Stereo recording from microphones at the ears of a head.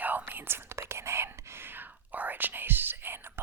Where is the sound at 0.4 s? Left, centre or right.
Right.